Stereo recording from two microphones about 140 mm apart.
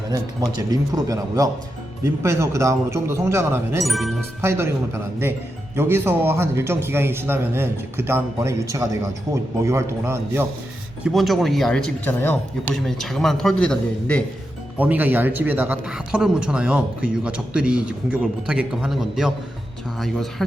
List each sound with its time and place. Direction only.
0.5 s speech: 25° right (ahead or behind)
3.8 s speech: centre (ahead or behind)
4.4 s a man's voice: 15° right (ahead or behind)
5.7 s a man's voice: 15° right (ahead or behind)
11.0 s speech: centre (ahead or behind)
12.9 s speech: centre (ahead or behind)
14.8 s a man's voice: 10° right (ahead or behind)